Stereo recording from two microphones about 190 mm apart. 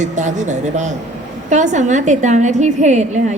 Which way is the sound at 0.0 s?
40° right (ahead or behind).